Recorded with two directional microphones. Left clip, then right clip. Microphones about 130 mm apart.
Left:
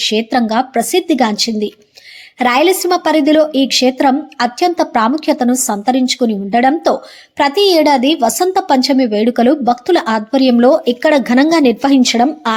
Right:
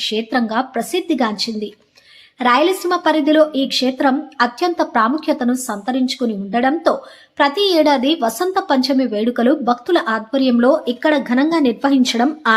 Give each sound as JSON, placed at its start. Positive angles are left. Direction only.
{"t": 0.0, "sound": "a woman's voice", "side_deg": 40}